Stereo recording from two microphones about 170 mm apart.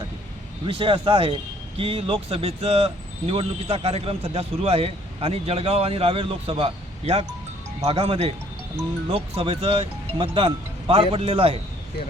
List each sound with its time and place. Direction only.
0.6 s speech: 30° right (ahead or behind)